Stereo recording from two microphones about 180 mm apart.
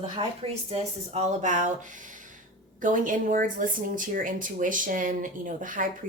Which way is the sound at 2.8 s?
45° right (ahead or behind).